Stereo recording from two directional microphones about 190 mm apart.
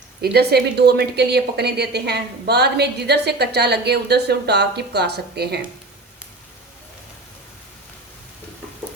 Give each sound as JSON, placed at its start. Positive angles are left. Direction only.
{"t": 0.2, "sound": "speech", "side_deg": -55}